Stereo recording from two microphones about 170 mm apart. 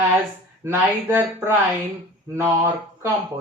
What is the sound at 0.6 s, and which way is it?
Speech, 15° right (ahead or behind).